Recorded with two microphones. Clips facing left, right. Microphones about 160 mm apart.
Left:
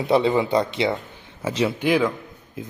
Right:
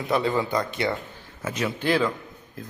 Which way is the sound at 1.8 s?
15° left (ahead or behind).